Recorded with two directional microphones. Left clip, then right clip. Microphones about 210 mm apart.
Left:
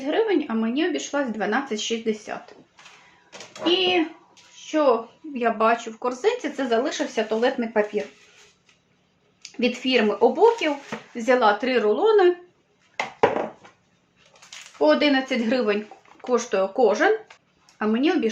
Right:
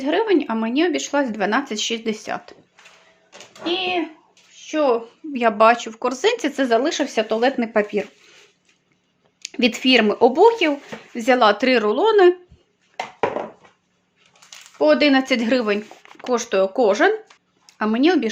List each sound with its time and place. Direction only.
0.0 s speech: 40° right (ahead or behind)
3.6 s a child's voice: 5° right (ahead or behind)
4.6 s a woman's voice: 45° right (ahead or behind)
9.4 s a woman's voice: 50° right (ahead or behind)
14.8 s a woman's voice: 50° right (ahead or behind); by 15.8 s 35° right (ahead or behind)
16.0 s a woman's voice: 50° right (ahead or behind)